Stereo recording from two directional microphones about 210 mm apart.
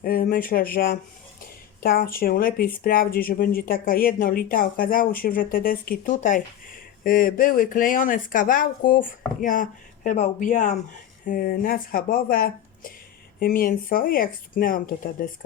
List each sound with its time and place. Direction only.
0.0 s speech: 45° left (ahead or behind)